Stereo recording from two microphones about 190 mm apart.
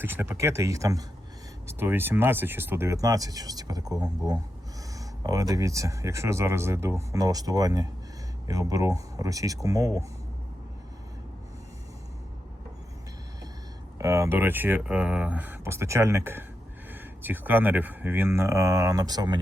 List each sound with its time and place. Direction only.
0.0 s speech: 10° right (ahead or behind)
14.0 s speech: 15° right (ahead or behind)